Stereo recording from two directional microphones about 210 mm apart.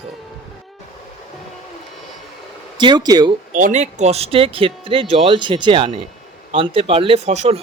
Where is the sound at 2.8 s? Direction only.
20° right (ahead or behind).